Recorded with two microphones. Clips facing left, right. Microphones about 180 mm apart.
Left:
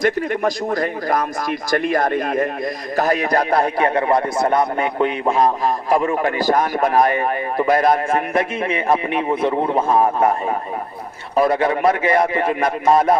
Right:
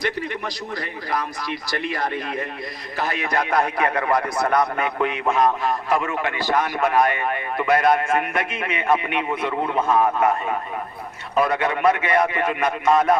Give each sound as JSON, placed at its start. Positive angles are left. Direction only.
{"t": 0.0, "sound": "a man's voice", "side_deg": 45}
{"t": 11.3, "sound": "a man's voice", "side_deg": 35}